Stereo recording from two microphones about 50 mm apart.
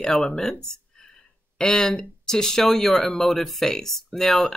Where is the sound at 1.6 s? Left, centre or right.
Centre.